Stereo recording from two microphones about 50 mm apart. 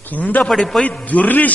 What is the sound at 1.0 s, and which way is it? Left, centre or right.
Speech, left.